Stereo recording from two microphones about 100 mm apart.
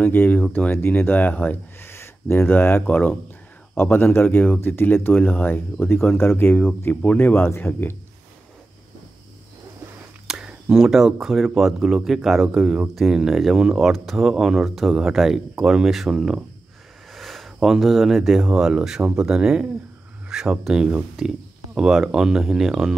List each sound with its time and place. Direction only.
0.0 s speech: 15° left (ahead or behind)
10.2 s speech: 5° right (ahead or behind)